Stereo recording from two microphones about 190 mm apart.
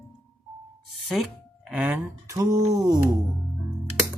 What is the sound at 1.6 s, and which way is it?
Speech, 5° right (ahead or behind).